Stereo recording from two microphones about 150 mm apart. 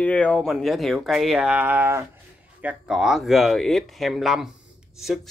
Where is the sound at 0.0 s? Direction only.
10° left (ahead or behind).